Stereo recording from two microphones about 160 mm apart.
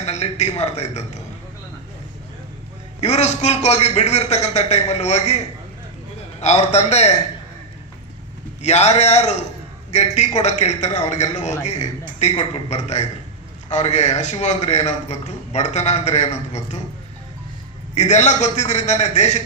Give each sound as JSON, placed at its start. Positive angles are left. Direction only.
{"t": 0.0, "sound": "a man's voice", "side_deg": 45}
{"t": 3.0, "sound": "a man's voice", "side_deg": 45}
{"t": 6.4, "sound": "a man's voice", "side_deg": 45}
{"t": 8.6, "sound": "a man's voice", "side_deg": 45}
{"t": 17.9, "sound": "a man's voice", "side_deg": 45}